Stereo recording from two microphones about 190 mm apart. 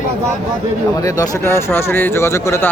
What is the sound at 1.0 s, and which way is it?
Speech, 20° left (ahead or behind).